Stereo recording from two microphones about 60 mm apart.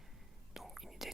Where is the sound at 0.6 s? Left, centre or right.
Centre.